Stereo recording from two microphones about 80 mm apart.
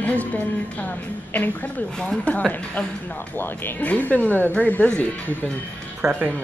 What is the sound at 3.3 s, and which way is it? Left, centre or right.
Speech, left.